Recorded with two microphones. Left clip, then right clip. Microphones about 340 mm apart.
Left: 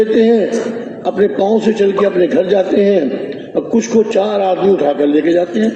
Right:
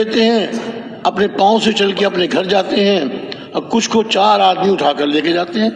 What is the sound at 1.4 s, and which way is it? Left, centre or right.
A man's voice, right.